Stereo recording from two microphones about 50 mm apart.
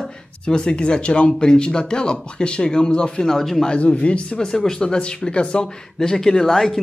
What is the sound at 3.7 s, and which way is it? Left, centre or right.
Speech, left.